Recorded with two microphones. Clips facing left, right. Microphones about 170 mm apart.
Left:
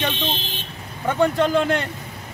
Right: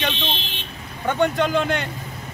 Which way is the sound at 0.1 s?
50° left (ahead or behind).